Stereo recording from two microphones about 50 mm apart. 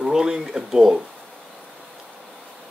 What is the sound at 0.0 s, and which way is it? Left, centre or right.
Speech, centre.